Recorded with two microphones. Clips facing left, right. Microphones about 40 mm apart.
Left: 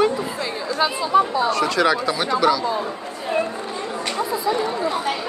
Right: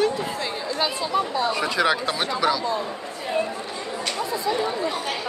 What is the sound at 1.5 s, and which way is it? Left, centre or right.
Speech, centre.